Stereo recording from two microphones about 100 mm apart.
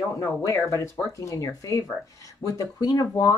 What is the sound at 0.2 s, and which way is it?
Speech, 30° left (ahead or behind).